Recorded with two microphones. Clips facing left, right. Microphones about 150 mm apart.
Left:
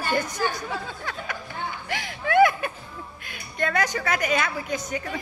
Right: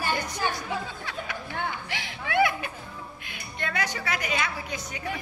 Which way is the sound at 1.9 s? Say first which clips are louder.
Left 10 dB; 45° left (ahead or behind).